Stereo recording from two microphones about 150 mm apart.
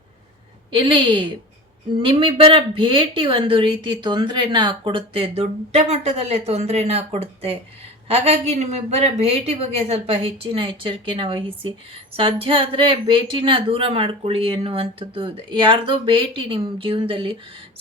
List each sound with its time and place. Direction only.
0.7 s a woman's voice: 35° right (ahead or behind)